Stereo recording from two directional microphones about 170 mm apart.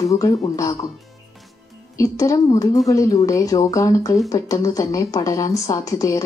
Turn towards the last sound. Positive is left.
turn(degrees=20)  # may be behind; listen again after turning